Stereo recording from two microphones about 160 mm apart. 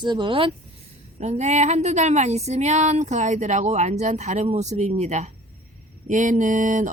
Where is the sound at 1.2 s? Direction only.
45° right (ahead or behind).